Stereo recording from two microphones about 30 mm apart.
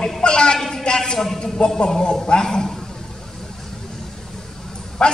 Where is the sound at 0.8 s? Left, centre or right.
Left.